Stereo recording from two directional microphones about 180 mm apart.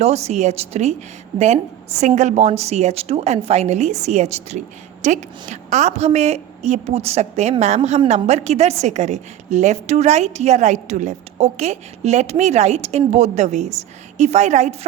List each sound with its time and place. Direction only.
0.0 s a woman's voice: 35° right (ahead or behind)
2.0 s a woman's voice: 40° right (ahead or behind)